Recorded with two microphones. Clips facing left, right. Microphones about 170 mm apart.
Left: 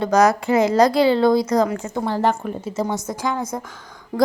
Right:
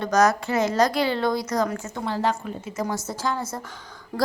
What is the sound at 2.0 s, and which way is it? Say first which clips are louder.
Speech: left 5 dB; 50° left (ahead or behind).